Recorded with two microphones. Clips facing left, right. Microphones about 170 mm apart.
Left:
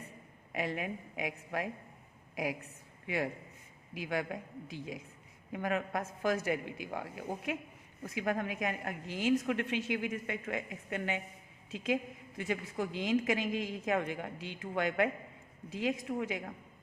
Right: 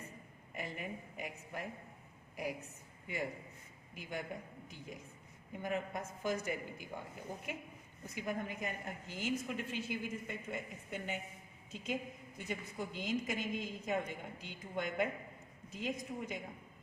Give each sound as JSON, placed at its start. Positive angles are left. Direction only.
{"t": 0.5, "sound": "a woman's voice", "side_deg": 90}
{"t": 3.9, "sound": "a woman's voice", "side_deg": 90}
{"t": 12.4, "sound": "a woman's voice", "side_deg": 85}